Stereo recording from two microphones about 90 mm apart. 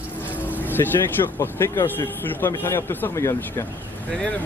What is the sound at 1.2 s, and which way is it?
Speech, 30° left (ahead or behind).